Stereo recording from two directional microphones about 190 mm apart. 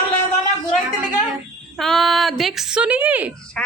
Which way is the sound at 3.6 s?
5° left (ahead or behind).